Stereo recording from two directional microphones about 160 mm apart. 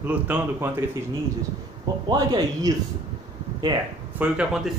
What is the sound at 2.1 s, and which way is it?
Speech, 25° right (ahead or behind).